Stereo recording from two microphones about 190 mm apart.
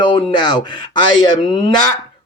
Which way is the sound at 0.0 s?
25° left (ahead or behind).